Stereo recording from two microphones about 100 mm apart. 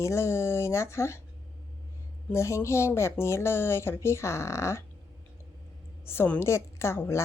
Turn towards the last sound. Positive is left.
turn(degrees=25)  # may be behind; listen again after turning